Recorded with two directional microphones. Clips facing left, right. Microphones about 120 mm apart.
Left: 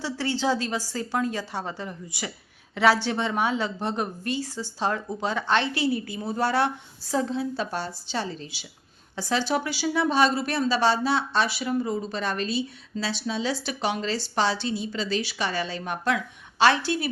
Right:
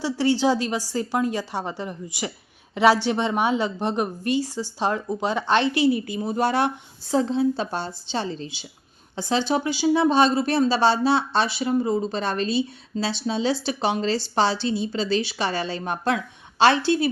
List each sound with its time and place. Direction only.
0.0 s a woman's voice: 15° right (ahead or behind)